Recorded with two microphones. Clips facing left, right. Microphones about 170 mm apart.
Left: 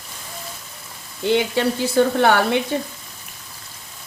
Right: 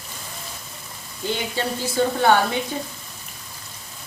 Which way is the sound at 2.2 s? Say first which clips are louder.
Left 1 dB; 70° left (ahead or behind).